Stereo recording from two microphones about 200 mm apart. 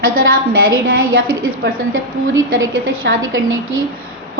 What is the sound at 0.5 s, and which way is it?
Speech, 80° right.